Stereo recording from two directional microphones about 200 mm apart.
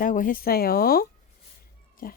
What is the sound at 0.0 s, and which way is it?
Speech, 45° left (ahead or behind).